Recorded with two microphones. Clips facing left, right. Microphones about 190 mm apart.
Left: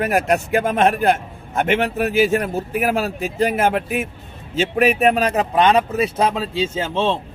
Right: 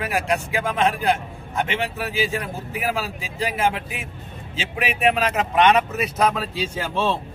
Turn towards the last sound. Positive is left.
turn(degrees=20)  # may be behind; listen again after turning